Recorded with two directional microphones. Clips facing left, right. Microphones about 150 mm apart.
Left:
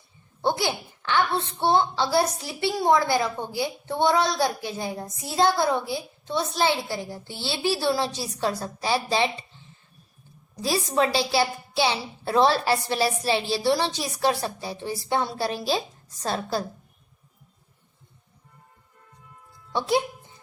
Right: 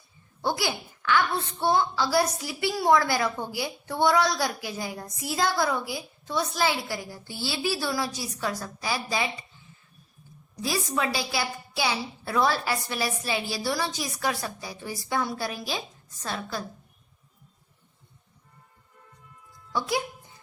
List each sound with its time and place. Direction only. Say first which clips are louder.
0.4 s a woman's voice: left 3 dB; 25° left (ahead or behind)
10.6 s a woman's voice: left 5 dB; 30° left (ahead or behind)
19.7 s a woman's voice: left 5 dB; 25° left (ahead or behind)